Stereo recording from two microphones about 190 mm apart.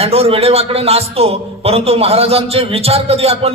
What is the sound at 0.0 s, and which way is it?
A man's voice, 35° right (ahead or behind).